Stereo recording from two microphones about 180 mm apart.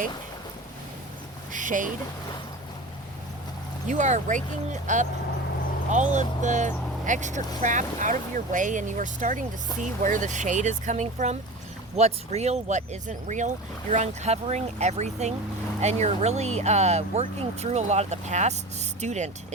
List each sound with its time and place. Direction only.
1.5 s speech: 45° right (ahead or behind)
3.8 s speech: 40° right (ahead or behind)